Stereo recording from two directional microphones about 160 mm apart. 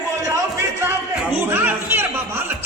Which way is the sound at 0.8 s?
15° right (ahead or behind).